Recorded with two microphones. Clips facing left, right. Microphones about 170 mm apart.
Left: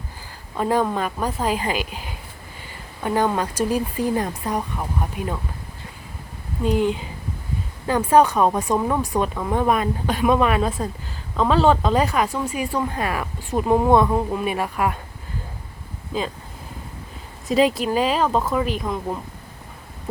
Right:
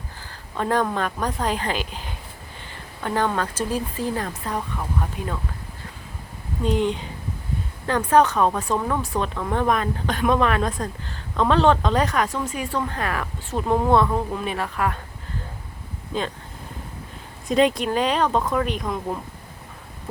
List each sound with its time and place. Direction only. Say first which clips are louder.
0.5 s speech: left 2 dB; 10° left (ahead or behind)
6.6 s speech: left 2 dB; 5° left (ahead or behind)
16.1 s speech: left 1 dB; 5° left (ahead or behind)
17.5 s speech: left 1 dB; centre (ahead or behind)